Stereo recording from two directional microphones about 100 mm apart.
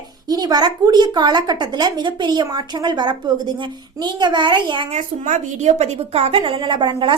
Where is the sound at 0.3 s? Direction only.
40° right (ahead or behind).